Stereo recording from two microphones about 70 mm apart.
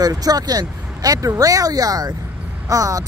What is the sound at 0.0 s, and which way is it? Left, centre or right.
Speech, right.